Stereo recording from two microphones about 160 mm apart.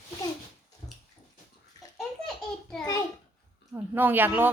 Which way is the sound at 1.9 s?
Centre (ahead or behind).